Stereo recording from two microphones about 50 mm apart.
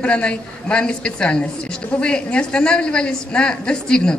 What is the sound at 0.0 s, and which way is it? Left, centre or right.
A woman's voice, left.